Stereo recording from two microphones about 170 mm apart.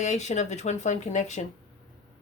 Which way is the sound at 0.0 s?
45° left (ahead or behind).